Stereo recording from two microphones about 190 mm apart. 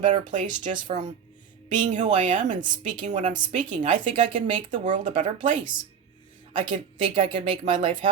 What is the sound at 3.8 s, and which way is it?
Speech, 25° right (ahead or behind).